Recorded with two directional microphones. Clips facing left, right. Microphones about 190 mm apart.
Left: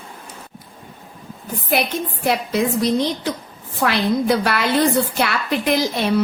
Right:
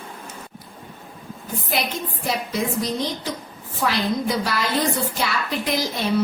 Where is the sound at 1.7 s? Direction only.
60° left (ahead or behind).